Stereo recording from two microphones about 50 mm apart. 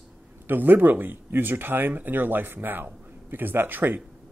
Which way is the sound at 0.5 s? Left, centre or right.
Right.